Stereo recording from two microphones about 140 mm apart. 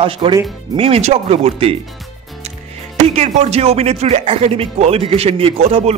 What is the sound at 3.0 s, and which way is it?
Speech, 50° right (ahead or behind).